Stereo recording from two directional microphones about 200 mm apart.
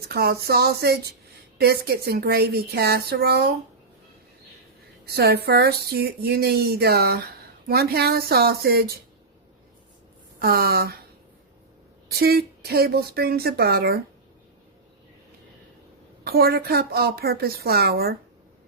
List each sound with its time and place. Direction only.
0.1 s speech: 50° right (ahead or behind)
5.0 s speech: 50° right (ahead or behind)
10.4 s speech: 50° right (ahead or behind)
12.2 s speech: 50° right (ahead or behind)
16.2 s speech: 50° right (ahead or behind)